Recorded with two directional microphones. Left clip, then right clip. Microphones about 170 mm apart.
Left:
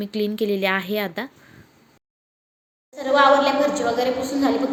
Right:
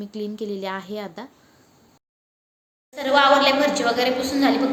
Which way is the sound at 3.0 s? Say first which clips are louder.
Even; 5° left (ahead or behind).